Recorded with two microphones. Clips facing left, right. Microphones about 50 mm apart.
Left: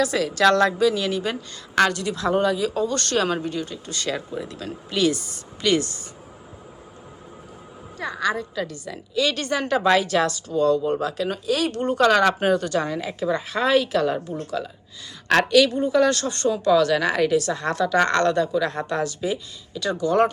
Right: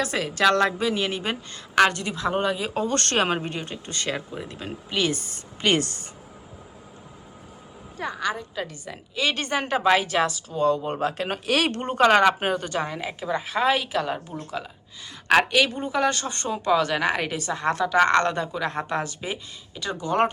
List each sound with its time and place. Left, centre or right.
0.0 s a woman's voice: right
2.8 s a woman's voice: right
5.1 s a woman's voice: right
7.9 s a woman's voice: centre; by 11.3 s right
11.4 s speech: right
11.7 s a woman's voice: right